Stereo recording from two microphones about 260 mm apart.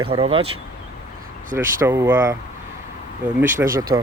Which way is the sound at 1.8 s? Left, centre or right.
Centre.